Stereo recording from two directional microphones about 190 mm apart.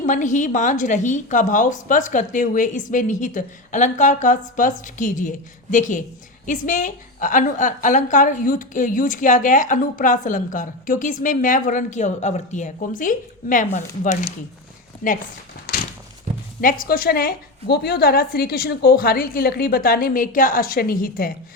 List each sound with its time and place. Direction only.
0.0 s a woman's voice: 40° left (ahead or behind)
15.7 s a sound: 55° left (ahead or behind)
16.6 s a woman's voice: 50° left (ahead or behind)